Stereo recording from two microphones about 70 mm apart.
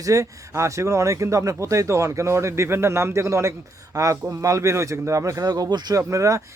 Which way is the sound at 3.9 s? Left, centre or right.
Right.